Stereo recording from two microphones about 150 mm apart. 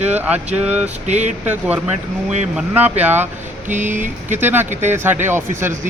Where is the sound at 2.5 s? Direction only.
10° right (ahead or behind).